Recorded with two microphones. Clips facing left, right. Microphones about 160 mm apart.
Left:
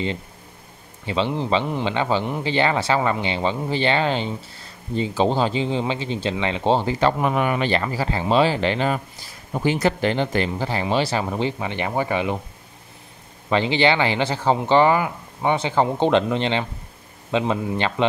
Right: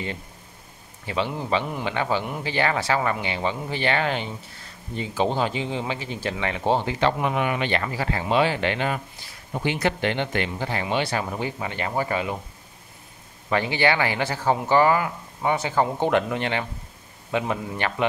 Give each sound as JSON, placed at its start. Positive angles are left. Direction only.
{"t": 1.0, "sound": "a man's voice", "side_deg": 25}
{"t": 13.5, "sound": "a man's voice", "side_deg": 25}